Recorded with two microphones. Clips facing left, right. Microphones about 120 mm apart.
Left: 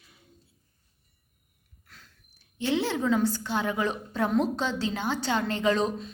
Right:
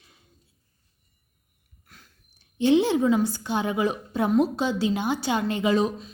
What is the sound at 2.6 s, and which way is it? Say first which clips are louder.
A woman's voice: right 7 dB; 20° right (ahead or behind).